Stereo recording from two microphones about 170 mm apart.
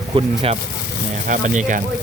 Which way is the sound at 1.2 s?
50° right (ahead or behind).